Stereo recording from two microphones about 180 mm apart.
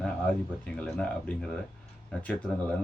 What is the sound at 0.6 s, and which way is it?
Speech, 5° left (ahead or behind).